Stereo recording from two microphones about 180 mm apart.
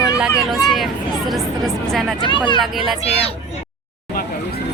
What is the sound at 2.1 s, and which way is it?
Speech, 25° left (ahead or behind).